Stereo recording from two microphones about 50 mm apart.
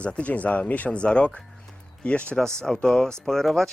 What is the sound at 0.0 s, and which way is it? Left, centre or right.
Speech, left.